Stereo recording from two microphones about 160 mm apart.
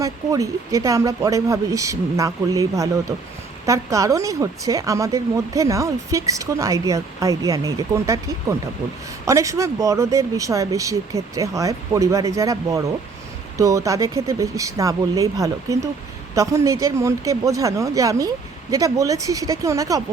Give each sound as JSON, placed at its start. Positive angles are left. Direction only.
{"t": 0.0, "sound": "speech", "side_deg": -20}